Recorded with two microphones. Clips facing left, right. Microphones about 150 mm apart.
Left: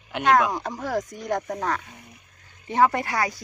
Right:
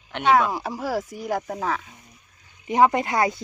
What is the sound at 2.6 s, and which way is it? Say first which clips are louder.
Speech: right 2 dB; 15° right (ahead or behind).